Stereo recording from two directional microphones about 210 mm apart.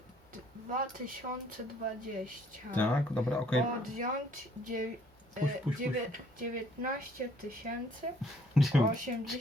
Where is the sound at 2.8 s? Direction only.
5° left (ahead or behind).